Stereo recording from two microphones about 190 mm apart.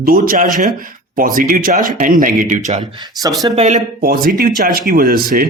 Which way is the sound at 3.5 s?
40° right (ahead or behind).